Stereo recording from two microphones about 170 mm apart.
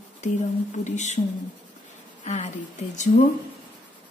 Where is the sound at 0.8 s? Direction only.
45° left (ahead or behind).